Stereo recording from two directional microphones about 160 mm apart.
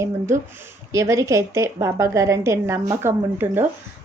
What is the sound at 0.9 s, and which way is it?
A woman's voice, 20° right (ahead or behind).